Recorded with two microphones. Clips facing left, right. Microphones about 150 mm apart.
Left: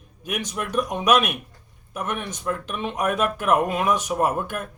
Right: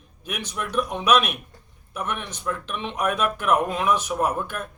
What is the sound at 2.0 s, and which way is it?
Speech, 45° left (ahead or behind).